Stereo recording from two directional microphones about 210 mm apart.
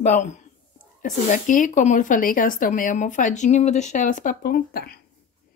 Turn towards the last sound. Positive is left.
turn(degrees=45)  # may be behind; listen again after turning